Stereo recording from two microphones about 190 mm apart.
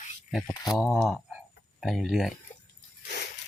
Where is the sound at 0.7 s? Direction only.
Centre (ahead or behind).